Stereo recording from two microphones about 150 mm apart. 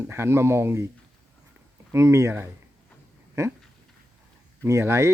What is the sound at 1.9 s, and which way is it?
Speech, 20° right (ahead or behind).